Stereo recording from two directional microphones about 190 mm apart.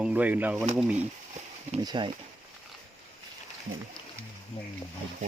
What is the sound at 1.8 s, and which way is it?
Speech, 25° right (ahead or behind).